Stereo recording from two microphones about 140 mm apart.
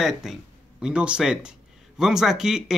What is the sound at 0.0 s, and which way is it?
Speech, 5° right (ahead or behind).